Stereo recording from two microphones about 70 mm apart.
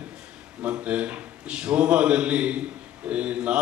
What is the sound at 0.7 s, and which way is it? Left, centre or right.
A man's voice, centre.